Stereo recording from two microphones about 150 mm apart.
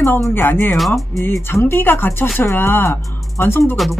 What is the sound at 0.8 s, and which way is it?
Speech, centre (ahead or behind).